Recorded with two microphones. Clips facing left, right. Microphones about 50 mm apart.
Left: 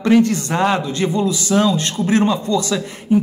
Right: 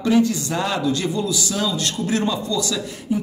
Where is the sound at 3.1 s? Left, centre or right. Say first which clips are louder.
Left 8 dB; left.